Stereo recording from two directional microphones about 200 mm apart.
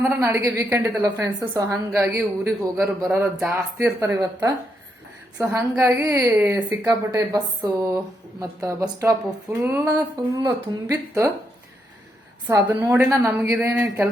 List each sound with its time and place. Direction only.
0.0 s a woman's voice: 10° right (ahead or behind)
12.5 s a woman's voice: 10° right (ahead or behind)